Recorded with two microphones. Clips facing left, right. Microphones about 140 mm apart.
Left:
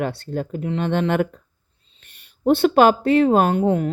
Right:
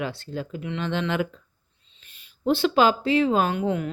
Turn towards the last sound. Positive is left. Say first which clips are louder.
# left 6 dB
turn(degrees=45)  # may be behind; listen again after turning